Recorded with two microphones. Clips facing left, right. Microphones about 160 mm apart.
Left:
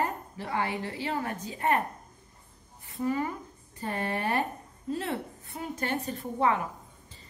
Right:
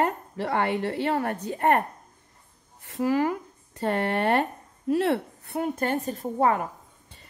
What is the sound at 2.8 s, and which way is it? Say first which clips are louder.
Speech: right 6 dB; 80° right.